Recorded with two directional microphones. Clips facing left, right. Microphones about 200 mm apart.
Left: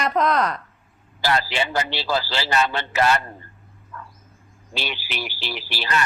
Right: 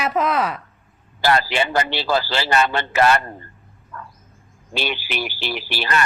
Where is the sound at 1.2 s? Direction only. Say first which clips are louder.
Right 4 dB; 55° right (ahead or behind).